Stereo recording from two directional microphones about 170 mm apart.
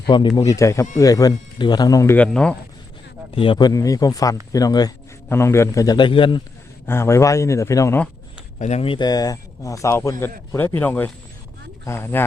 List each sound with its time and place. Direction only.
0.1 s a man's voice: 30° left (ahead or behind); by 2.6 s 5° left (ahead or behind)
3.3 s a man's voice: 30° left (ahead or behind)
6.8 s a man's voice: 15° left (ahead or behind)
8.5 s a man's voice: 40° left (ahead or behind); by 12.2 s 15° left (ahead or behind)